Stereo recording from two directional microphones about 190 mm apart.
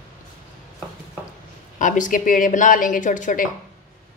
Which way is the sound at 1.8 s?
40° left (ahead or behind).